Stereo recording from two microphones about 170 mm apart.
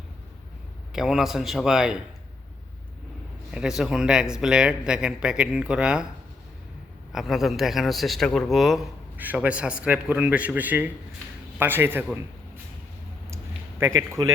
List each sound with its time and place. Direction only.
0.9 s a man's voice: 5° right (ahead or behind)
3.5 s a man's voice: 5° right (ahead or behind)
7.1 s a man's voice: centre (ahead or behind)
13.3 s a sound: 15° right (ahead or behind)